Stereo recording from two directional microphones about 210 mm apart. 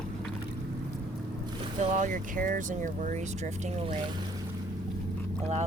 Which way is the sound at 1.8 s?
35° right (ahead or behind).